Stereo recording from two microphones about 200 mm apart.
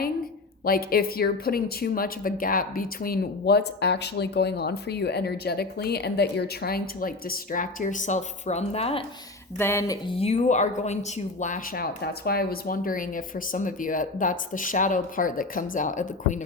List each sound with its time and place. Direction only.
0.6 s a woman's voice: 50° left (ahead or behind); by 9.0 s 30° left (ahead or behind)
9.6 s speech: 10° left (ahead or behind)
10.2 s a woman's voice: 35° left (ahead or behind)